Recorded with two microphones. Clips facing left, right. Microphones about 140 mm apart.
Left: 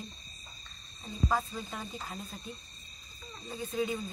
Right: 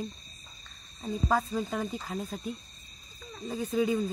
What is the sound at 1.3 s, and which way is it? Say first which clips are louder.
Speech: right 7 dB; 90° right.